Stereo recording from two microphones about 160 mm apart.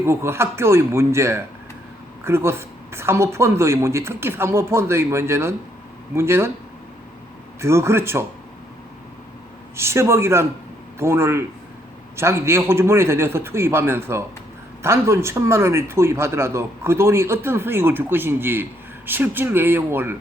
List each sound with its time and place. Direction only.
0.0 s a man's voice: 15° right (ahead or behind)
7.6 s a man's voice: 15° right (ahead or behind)
9.7 s a man's voice: 15° right (ahead or behind)